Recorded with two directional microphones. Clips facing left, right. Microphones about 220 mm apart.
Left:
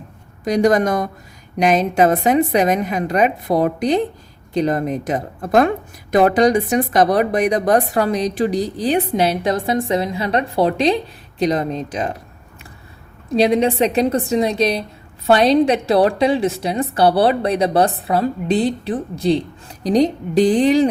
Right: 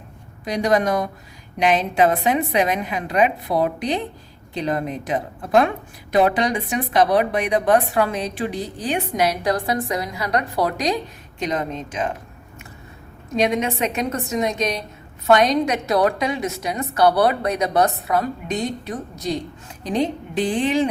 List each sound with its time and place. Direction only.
0.4 s a woman's voice: 45° left (ahead or behind)
13.3 s speech: 35° left (ahead or behind)